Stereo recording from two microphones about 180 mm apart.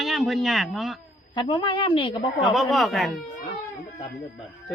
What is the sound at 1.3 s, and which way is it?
Speech, 30° left (ahead or behind).